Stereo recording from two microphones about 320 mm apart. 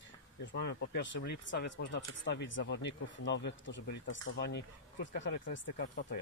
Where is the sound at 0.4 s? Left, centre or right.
Left.